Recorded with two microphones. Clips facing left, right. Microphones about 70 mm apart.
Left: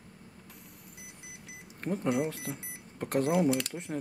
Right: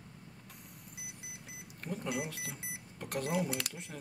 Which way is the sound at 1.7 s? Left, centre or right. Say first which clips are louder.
Left 8 dB; left.